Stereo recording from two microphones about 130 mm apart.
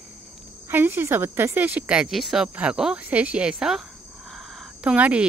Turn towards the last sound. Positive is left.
turn(degrees=-10)  # may be behind; listen again after turning